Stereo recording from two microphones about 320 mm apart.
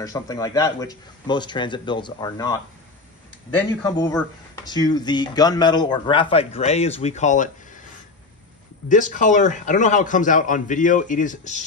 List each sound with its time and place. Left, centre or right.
0.0 s speech: centre
3.8 s speech: centre
8.8 s a man's voice: left